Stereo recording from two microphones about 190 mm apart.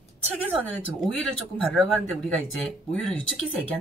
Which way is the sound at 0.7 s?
5° left (ahead or behind).